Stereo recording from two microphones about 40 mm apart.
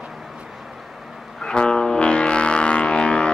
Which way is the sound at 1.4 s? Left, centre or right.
Centre.